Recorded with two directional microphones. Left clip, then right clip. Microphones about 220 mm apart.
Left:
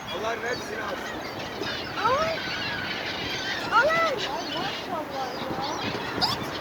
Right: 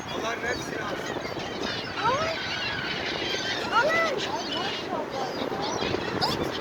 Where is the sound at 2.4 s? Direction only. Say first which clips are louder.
Even; 45° right (ahead or behind).